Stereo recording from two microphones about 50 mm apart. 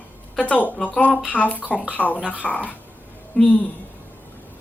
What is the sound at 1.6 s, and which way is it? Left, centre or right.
Speech, right.